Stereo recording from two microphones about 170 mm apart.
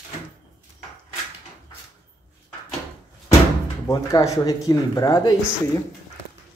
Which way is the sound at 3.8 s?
20° left (ahead or behind).